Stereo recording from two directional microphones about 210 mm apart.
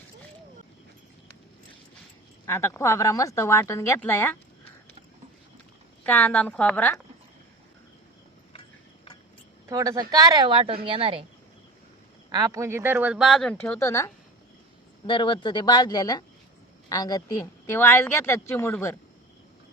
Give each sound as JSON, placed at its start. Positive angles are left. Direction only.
{"t": 2.5, "sound": "speech", "side_deg": 10}
{"t": 6.0, "sound": "speech", "side_deg": 10}
{"t": 9.6, "sound": "speech", "side_deg": -15}
{"t": 12.3, "sound": "speech", "side_deg": -15}